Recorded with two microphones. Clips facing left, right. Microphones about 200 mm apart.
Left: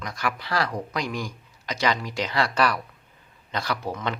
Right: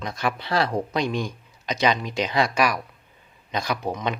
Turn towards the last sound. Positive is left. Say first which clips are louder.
# right 2 dB
turn(degrees=-15)  # may be behind; listen again after turning